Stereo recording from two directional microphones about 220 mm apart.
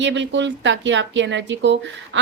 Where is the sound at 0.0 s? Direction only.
55° right (ahead or behind).